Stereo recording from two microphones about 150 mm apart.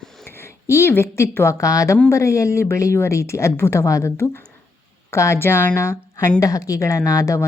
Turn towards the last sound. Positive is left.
turn(degrees=20)  # may be behind; listen again after turning